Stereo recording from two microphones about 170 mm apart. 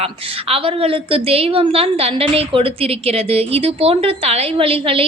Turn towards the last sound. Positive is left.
turn(degrees=-35)  # may be behind; listen again after turning